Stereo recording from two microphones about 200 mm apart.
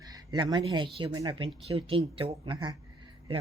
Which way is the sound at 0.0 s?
20° right (ahead or behind).